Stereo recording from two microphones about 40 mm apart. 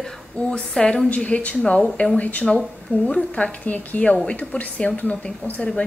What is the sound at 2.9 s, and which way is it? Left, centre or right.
A woman's voice, left.